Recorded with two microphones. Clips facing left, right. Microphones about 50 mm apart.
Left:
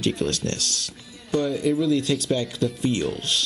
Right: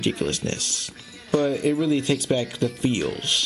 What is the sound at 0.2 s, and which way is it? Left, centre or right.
Speech, right.